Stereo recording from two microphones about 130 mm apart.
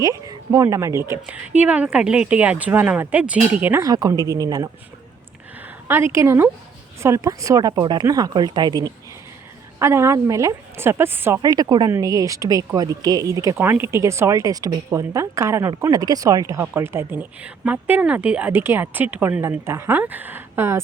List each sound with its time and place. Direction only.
0.0 s speech: 25° right (ahead or behind)
3.8 s a woman's voice: 30° right (ahead or behind)
5.9 s a woman's voice: 20° right (ahead or behind)
9.7 s a woman's voice: 20° right (ahead or behind)
11.4 s a woman's voice: 30° right (ahead or behind)